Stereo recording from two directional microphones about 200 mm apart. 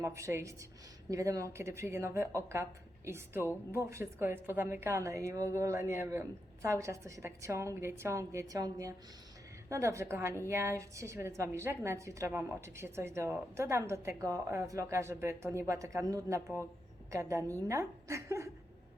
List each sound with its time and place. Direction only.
0.0 s a woman's voice: 15° right (ahead or behind)